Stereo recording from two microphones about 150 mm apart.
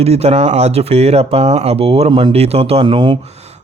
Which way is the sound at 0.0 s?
45° right (ahead or behind).